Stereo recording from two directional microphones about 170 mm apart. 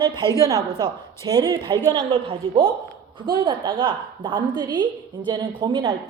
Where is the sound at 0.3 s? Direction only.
20° right (ahead or behind).